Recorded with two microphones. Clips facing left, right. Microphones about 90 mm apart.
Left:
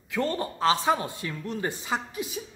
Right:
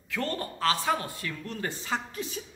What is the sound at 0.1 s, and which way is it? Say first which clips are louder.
A woman's voice: left 4 dB; 20° left (ahead or behind).